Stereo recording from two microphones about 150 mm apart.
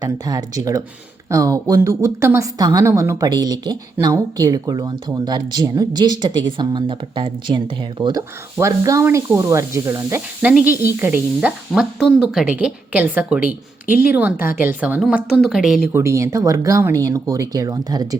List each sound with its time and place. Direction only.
0.0 s speech: 25° right (ahead or behind); by 15.8 s centre (ahead or behind)
15.9 s speech: 20° right (ahead or behind)